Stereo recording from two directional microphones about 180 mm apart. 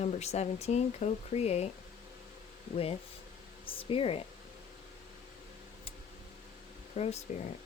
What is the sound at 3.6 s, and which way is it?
Speech, 30° left (ahead or behind).